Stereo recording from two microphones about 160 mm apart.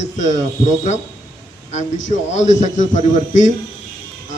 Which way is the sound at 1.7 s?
50° left (ahead or behind).